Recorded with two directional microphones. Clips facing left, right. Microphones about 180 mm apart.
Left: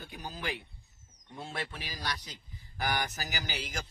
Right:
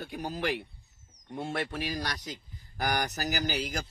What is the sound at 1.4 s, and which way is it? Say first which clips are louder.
Speech: right 7 dB; 55° right (ahead or behind).